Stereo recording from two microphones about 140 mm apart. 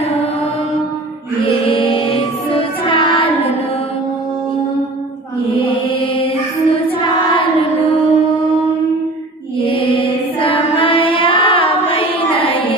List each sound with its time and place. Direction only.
1.6 s music: 40° left (ahead or behind)
6.8 s a sound: 40° left (ahead or behind)
9.6 s mantra: 40° left (ahead or behind)